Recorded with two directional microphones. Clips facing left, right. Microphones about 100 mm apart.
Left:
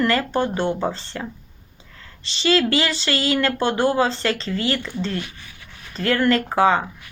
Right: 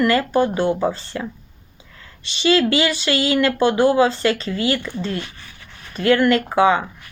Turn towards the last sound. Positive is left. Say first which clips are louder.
# right 2 dB
turn(degrees=35)  # may be behind; listen again after turning